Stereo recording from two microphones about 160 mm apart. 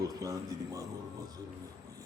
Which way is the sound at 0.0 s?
20° right (ahead or behind).